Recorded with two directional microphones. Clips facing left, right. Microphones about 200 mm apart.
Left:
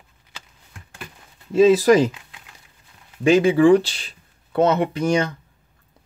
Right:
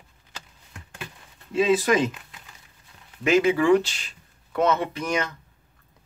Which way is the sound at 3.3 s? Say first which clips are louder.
Left 5 dB; 30° left (ahead or behind).